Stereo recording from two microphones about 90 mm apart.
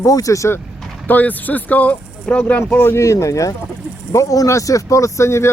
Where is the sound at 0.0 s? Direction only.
40° left (ahead or behind).